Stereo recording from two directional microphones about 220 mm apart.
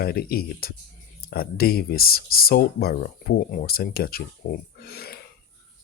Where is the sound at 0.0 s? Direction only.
45° left (ahead or behind).